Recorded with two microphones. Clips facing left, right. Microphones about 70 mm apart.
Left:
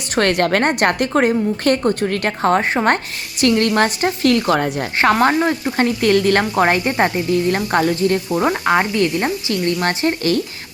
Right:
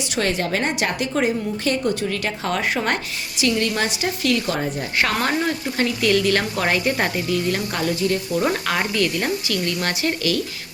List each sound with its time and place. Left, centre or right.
0.2 s a woman's voice: left
4.9 s speech: left
8.4 s speech: left